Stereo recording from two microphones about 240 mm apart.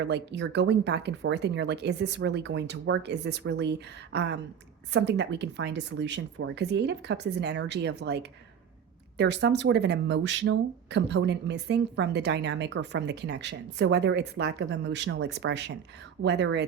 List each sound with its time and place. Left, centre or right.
0.0 s speech: right